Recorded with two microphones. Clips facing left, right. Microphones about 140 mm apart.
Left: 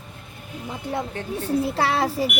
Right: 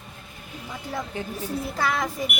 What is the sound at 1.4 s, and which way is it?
Speech, 30° left (ahead or behind).